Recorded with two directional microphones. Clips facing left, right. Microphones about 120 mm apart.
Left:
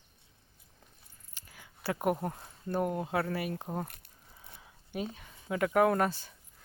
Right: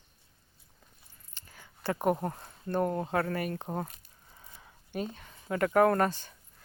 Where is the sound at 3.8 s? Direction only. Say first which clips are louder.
Even; 65° left (ahead or behind).